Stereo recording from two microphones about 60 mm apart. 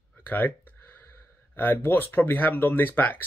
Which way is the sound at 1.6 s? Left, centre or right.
Left.